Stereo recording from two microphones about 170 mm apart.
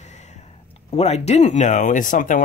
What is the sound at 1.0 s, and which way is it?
Speech, 40° left (ahead or behind).